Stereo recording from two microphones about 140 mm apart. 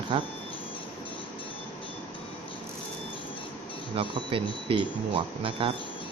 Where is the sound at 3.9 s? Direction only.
40° right (ahead or behind).